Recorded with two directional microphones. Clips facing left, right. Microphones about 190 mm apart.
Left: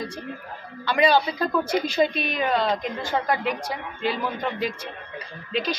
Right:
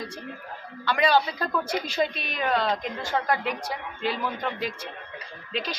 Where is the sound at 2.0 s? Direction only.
15° left (ahead or behind).